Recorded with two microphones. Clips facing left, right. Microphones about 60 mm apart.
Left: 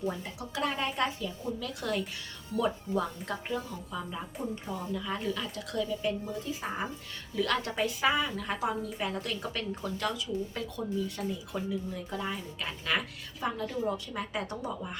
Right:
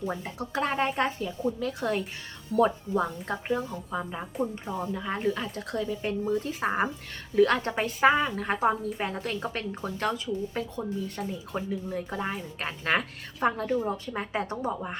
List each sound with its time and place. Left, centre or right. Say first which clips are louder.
0.0 s speech: right 2 dB; right
7.3 s speech: right 7 dB; right
13.9 s speech: right 3 dB; right